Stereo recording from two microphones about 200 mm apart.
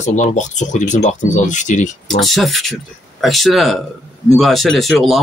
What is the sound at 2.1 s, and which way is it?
Speech, centre (ahead or behind).